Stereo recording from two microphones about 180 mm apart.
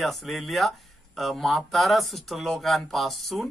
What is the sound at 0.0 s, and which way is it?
Speech, centre (ahead or behind).